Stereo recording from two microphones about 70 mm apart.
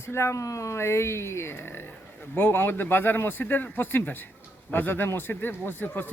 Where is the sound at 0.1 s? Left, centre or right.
Left.